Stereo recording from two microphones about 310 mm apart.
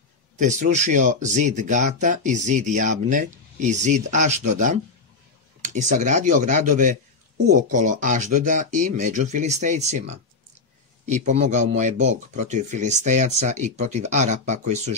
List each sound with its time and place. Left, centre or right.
0.4 s speech: right